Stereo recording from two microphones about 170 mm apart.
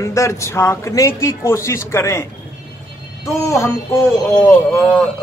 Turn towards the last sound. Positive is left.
turn(degrees=5)  # may be behind; listen again after turning